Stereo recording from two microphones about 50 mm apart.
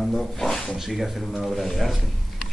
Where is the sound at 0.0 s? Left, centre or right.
Centre.